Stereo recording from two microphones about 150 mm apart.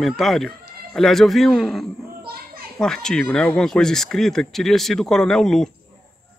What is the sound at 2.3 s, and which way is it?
Children playing, 80° right.